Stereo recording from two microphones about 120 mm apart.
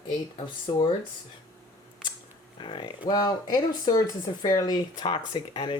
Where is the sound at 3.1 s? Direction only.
35° left (ahead or behind).